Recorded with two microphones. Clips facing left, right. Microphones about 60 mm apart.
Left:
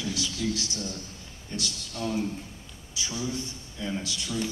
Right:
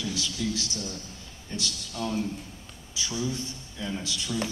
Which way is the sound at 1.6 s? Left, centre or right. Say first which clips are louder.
Even; centre.